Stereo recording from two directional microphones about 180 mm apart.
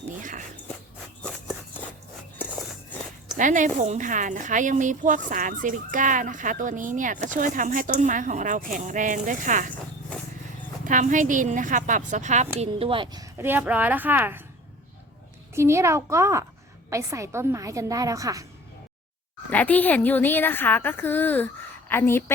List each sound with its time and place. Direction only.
0.2 s dog: 45° right (ahead or behind)
1.2 s a sound: 5° left (ahead or behind)
3.3 s a woman's voice: 45° right (ahead or behind)
10.8 s a woman's voice: 45° right (ahead or behind)
12.5 s speech: 30° right (ahead or behind); by 14.4 s 10° right (ahead or behind)
15.5 s speech: 15° right (ahead or behind)
19.5 s a woman's voice: 10° left (ahead or behind)